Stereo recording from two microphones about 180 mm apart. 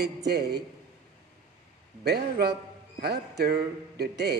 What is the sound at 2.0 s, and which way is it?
A man's voice, 65° right (ahead or behind).